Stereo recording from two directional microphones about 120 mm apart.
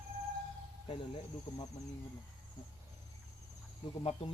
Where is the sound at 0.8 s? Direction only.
50° left (ahead or behind).